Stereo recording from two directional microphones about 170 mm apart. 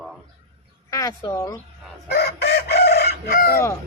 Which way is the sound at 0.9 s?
20° left (ahead or behind).